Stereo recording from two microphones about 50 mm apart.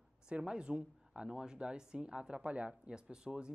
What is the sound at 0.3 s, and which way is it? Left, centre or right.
Speech, centre.